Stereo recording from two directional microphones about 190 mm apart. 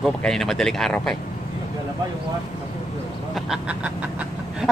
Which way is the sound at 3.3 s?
5° right (ahead or behind).